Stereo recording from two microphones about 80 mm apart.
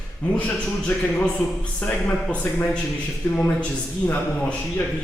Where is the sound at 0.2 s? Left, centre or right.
Centre.